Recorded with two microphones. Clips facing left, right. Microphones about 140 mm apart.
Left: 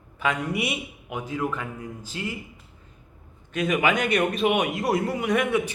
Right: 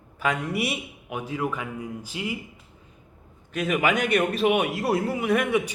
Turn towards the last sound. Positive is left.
turn(degrees=-10)  # may be behind; listen again after turning